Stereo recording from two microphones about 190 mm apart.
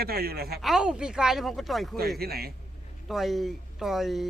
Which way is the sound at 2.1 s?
55° right (ahead or behind).